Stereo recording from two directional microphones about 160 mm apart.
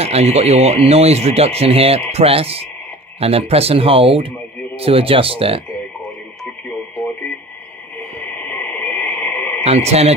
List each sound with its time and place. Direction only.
0.0 s speech: 40° right (ahead or behind)
8.5 s radio: 10° left (ahead or behind)
9.6 s speech: 40° right (ahead or behind)